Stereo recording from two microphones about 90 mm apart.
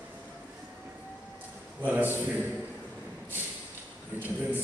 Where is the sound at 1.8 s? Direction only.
20° right (ahead or behind).